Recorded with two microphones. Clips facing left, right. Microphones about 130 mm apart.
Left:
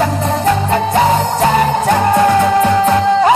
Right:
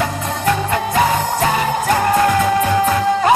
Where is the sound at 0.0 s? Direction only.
30° left (ahead or behind).